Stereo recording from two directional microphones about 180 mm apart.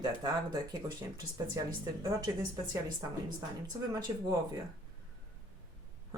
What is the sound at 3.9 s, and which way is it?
Speech, 20° right (ahead or behind).